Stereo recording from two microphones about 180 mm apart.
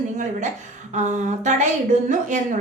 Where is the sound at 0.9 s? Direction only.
40° right (ahead or behind).